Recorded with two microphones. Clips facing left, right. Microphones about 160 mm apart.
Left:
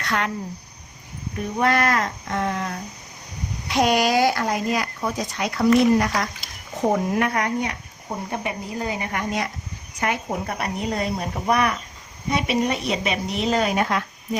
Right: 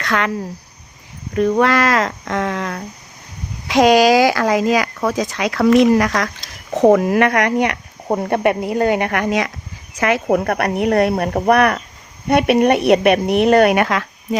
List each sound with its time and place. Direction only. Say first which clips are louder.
0.0 s speech: right 5 dB; 90° right
1.3 s a woman's voice: right 7 dB; 90° right